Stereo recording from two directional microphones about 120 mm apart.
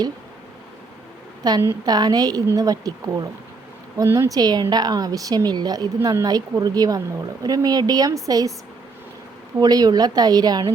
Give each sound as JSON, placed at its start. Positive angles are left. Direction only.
{"t": 1.6, "sound": "speech", "side_deg": -35}
{"t": 9.6, "sound": "speech", "side_deg": -35}